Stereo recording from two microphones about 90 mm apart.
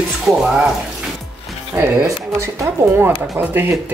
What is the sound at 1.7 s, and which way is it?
Speech, 25° right (ahead or behind).